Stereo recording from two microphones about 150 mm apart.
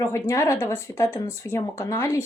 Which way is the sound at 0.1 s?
20° left (ahead or behind).